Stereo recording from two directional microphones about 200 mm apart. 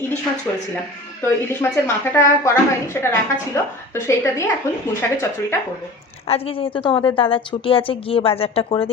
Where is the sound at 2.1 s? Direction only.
15° left (ahead or behind).